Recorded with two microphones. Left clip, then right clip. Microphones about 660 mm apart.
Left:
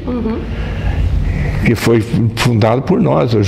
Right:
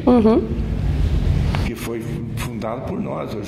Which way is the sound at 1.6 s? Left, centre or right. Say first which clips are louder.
Left 14 dB; left.